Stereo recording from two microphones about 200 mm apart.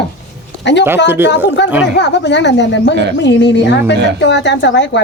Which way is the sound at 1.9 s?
60° left (ahead or behind).